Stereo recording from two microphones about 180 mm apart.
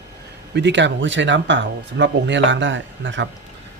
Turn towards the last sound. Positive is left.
turn(degrees=-90)